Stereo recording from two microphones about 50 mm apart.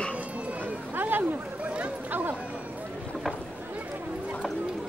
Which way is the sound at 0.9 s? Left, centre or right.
Right.